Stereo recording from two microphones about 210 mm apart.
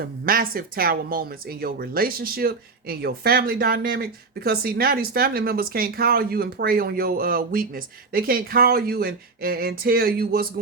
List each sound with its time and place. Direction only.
0.0 s speech: 45° right (ahead or behind)